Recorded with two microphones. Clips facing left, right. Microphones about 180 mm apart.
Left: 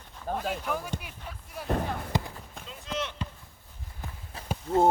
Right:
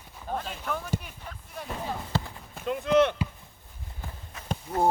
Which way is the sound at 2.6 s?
60° right (ahead or behind).